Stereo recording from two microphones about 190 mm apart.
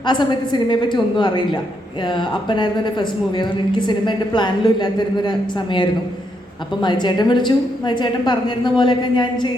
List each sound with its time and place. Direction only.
0.0 s a woman's voice: 25° left (ahead or behind)